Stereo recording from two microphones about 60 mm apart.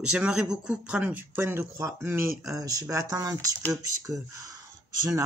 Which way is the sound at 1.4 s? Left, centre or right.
Right.